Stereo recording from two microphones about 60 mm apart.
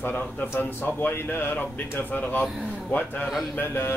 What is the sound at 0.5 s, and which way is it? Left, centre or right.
Mantra, left.